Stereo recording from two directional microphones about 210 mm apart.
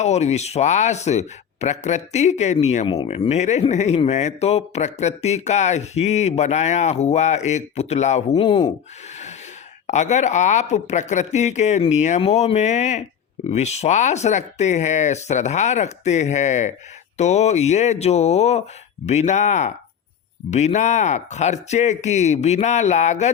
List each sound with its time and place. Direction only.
0.0 s speech: 30° left (ahead or behind)
9.8 s speech: 35° left (ahead or behind)